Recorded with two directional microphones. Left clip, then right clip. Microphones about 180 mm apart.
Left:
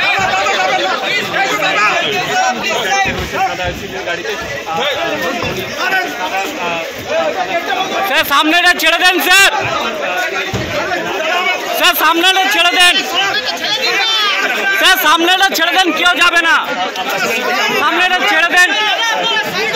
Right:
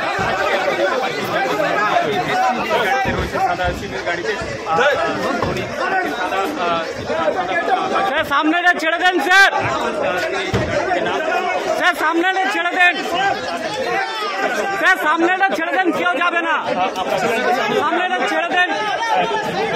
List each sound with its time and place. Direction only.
8.1 s a man's voice: 20° left (ahead or behind)
11.8 s a man's voice: 25° left (ahead or behind)
14.8 s a man's voice: 25° left (ahead or behind)
17.8 s a man's voice: 25° left (ahead or behind)